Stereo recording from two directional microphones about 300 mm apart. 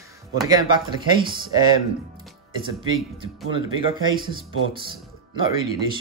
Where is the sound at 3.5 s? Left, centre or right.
Centre.